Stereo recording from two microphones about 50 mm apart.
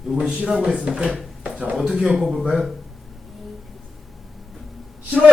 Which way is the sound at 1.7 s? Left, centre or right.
Centre.